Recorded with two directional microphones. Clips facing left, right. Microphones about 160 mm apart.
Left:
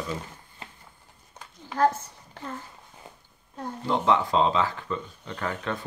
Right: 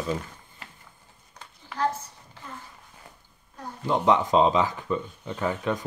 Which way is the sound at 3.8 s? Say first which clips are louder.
Right 2 dB; 15° right (ahead or behind).